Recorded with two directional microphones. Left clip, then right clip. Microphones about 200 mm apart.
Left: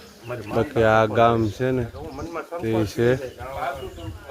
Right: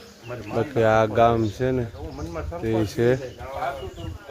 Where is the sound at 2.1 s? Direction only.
25° left (ahead or behind).